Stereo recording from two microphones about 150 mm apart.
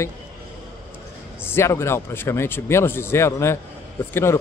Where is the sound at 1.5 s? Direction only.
15° left (ahead or behind).